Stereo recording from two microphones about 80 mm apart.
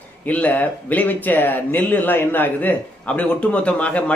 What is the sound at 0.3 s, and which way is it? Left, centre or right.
A man's voice, centre.